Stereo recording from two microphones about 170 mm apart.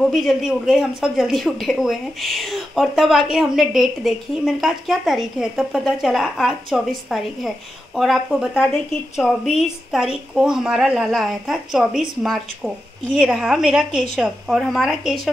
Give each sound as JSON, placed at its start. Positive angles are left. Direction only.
{"t": 0.0, "sound": "speech", "side_deg": 0}